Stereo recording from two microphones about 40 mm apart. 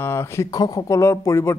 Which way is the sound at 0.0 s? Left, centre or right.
Left.